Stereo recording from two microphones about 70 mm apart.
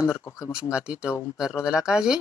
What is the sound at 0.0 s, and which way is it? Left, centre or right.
Speech, left.